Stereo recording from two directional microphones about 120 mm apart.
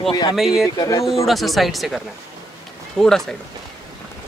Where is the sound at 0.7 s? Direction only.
25° left (ahead or behind).